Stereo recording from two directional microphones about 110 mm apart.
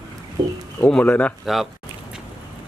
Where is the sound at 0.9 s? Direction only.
10° left (ahead or behind).